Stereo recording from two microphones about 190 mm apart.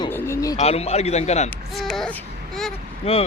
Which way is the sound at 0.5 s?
35° left (ahead or behind).